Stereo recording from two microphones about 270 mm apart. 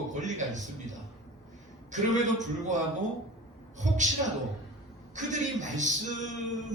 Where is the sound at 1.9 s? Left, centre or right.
Right.